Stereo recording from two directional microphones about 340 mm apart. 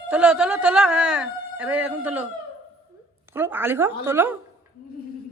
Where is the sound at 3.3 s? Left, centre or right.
Centre.